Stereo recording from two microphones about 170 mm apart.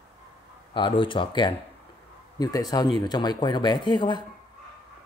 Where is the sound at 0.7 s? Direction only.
30° left (ahead or behind).